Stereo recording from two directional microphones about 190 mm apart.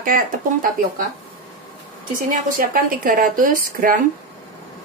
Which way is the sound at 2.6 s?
45° right (ahead or behind).